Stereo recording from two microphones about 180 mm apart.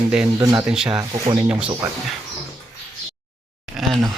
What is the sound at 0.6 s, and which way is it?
Speech, 5° right (ahead or behind).